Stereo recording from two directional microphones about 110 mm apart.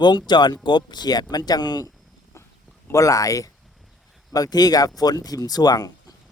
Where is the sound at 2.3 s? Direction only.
25° left (ahead or behind).